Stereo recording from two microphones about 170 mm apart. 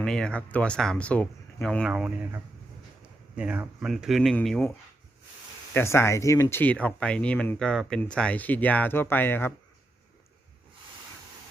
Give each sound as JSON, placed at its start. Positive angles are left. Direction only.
{"t": 0.0, "sound": "speech", "side_deg": 5}
{"t": 1.9, "sound": "speech", "side_deg": -5}
{"t": 5.7, "sound": "speech", "side_deg": 15}